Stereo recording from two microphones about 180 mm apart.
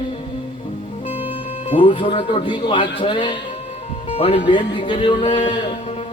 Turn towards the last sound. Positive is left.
turn(degrees=30)  # may be behind; listen again after turning